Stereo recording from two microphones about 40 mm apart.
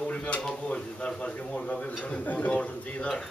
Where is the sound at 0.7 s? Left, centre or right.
Left.